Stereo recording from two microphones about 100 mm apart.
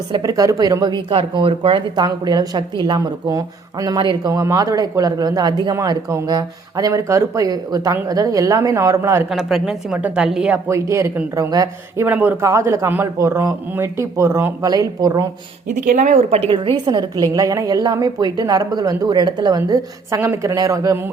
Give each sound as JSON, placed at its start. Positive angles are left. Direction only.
{"t": 0.1, "sound": "speech", "side_deg": -40}
{"t": 2.0, "sound": "a woman's voice", "side_deg": -45}
{"t": 3.9, "sound": "speech", "side_deg": -50}
{"t": 4.3, "sound": "a woman's voice", "side_deg": -35}
{"t": 9.3, "sound": "a woman's voice", "side_deg": 0}
{"t": 10.7, "sound": "a woman's voice", "side_deg": -30}
{"t": 12.0, "sound": "speech", "side_deg": -20}
{"t": 12.4, "sound": "speech", "side_deg": -30}
{"t": 14.7, "sound": "a woman's voice", "side_deg": -40}
{"t": 16.5, "sound": "a woman's voice", "side_deg": -50}
{"t": 20.1, "sound": "speech", "side_deg": -25}